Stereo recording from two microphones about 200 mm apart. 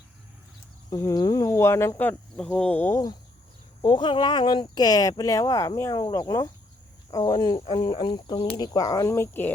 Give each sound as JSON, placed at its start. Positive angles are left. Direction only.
{"t": 0.9, "sound": "speech", "side_deg": 15}